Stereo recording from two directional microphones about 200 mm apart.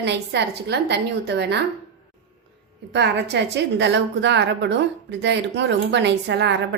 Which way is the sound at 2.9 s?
55° right (ahead or behind).